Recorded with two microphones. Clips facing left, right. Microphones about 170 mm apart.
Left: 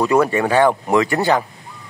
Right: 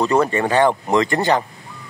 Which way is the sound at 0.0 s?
10° left (ahead or behind).